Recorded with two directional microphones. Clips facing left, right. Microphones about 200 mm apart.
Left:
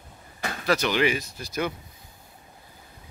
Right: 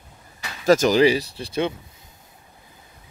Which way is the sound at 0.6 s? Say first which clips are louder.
Right 8 dB; 40° right (ahead or behind).